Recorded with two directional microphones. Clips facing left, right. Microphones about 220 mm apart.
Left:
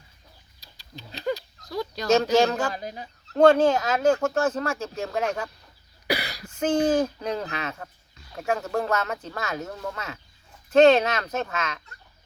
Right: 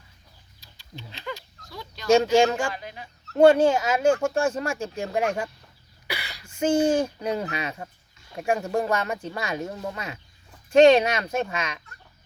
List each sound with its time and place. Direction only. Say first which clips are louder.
0.6 s a sound: right 1 dB; 40° left (ahead or behind)
2.3 s speech: right 1 dB; 10° right (ahead or behind)
2.7 s speech: left 4 dB; 40° left (ahead or behind)
3.3 s speech: right 1 dB; 10° right (ahead or behind)
6.1 s cough: left 8 dB; 40° left (ahead or behind)
6.5 s speech: right 1 dB; 10° right (ahead or behind)